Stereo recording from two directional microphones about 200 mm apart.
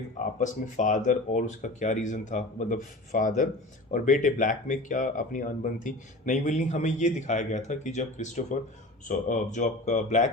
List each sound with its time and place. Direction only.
0.3 s speech: 40° left (ahead or behind)